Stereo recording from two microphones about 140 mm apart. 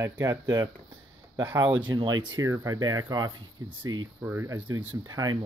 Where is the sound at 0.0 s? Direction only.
20° right (ahead or behind).